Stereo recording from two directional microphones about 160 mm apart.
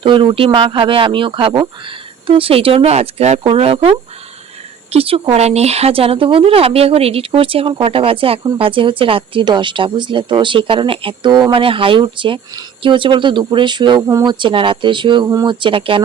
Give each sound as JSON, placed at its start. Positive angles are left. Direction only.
{"t": 0.0, "sound": "speech", "side_deg": -30}